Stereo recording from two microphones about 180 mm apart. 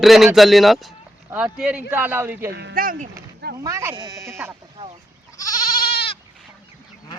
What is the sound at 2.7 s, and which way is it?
Speech, 50° right (ahead or behind).